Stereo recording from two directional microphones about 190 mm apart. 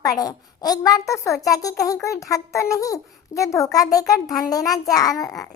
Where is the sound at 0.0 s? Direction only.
20° left (ahead or behind).